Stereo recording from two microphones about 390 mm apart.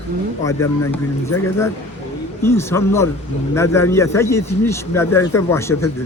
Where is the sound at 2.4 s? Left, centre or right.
Centre.